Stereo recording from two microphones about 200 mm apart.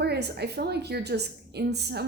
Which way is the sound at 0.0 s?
55° right (ahead or behind).